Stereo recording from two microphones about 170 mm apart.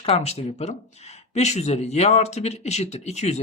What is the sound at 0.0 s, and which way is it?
Speech, 40° left (ahead or behind).